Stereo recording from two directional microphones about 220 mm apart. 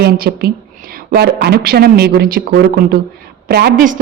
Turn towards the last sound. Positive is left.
turn(degrees=-40)  # may be behind; listen again after turning